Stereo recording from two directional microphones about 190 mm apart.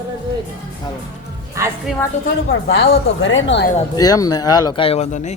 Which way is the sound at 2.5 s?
75° left (ahead or behind).